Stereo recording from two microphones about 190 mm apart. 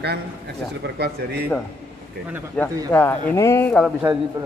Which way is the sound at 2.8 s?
10° left (ahead or behind).